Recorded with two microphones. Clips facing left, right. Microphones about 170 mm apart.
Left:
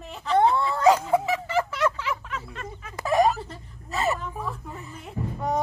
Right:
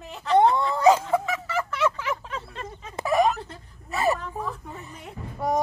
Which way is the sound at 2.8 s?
25° right (ahead or behind).